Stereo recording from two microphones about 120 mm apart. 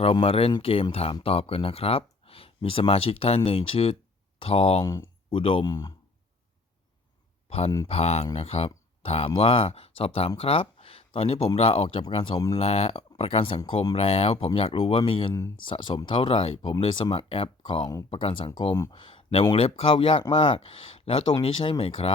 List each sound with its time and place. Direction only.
0.0 s speech: 50° left (ahead or behind)
4.8 s speech: 30° left (ahead or behind)
5.3 s speech: 50° left (ahead or behind)
5.6 s speech: 35° left (ahead or behind)
7.9 s speech: 60° left (ahead or behind)
12.3 s speech: 30° left (ahead or behind)
12.5 s speech: 60° left (ahead or behind)